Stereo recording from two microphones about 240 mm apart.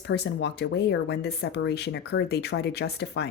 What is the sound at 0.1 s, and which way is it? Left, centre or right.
Speech, left.